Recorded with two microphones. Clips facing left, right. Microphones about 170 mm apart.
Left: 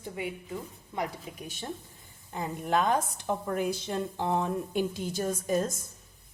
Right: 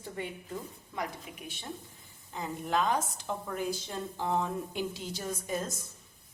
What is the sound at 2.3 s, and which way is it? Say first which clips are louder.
A woman's voice: left 3 dB; 55° left (ahead or behind).